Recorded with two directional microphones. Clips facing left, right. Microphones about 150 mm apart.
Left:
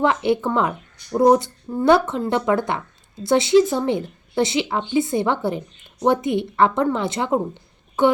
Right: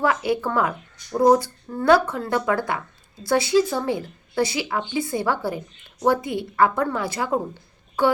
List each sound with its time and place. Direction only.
0.0 s a woman's voice: 25° left (ahead or behind)